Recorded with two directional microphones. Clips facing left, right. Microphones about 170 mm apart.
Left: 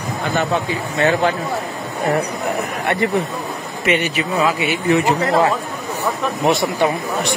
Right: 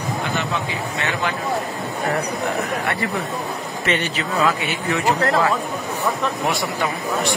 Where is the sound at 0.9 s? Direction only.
35° left (ahead or behind).